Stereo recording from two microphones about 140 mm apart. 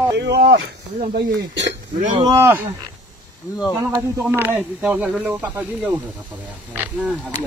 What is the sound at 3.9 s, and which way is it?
Speech, 20° right (ahead or behind).